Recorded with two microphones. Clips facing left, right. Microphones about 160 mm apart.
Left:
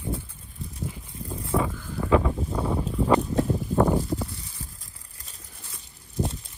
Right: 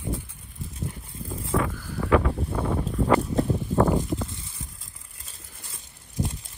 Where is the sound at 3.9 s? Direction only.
20° right (ahead or behind).